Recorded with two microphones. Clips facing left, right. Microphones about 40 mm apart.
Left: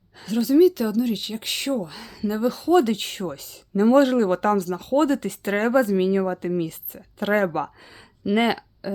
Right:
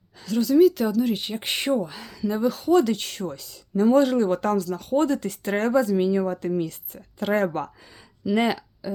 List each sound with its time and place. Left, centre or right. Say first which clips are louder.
0.2 s a sound: even; left
0.4 s speech: left 1 dB; centre
0.7 s speech: even; centre
2.7 s speech: left 2 dB; left
7.2 s speech: left 2 dB; centre
7.9 s a sound: left 1 dB; left